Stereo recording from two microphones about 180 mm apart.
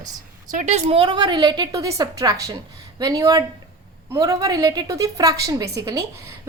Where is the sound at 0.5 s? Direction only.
40° right (ahead or behind).